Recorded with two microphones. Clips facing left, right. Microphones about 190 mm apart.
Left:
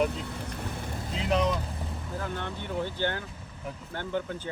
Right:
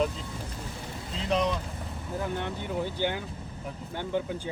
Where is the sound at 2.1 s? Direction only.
15° right (ahead or behind).